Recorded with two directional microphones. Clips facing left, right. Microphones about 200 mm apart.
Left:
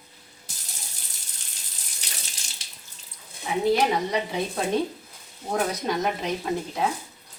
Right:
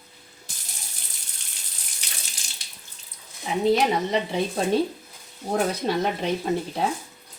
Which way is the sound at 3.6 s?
20° right (ahead or behind).